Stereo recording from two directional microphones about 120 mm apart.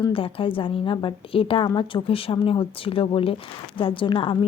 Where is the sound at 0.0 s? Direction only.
50° left (ahead or behind).